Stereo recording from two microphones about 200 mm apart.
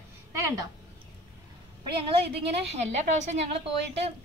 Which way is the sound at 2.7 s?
35° right (ahead or behind).